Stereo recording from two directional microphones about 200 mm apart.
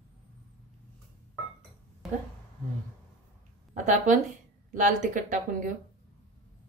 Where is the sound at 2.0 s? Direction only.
Centre (ahead or behind).